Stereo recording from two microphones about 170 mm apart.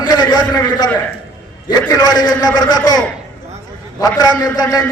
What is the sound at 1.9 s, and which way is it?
A man's voice, 20° left (ahead or behind).